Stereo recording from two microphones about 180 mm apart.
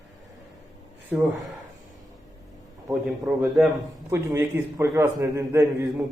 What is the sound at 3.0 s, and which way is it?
Speech, 5° right (ahead or behind).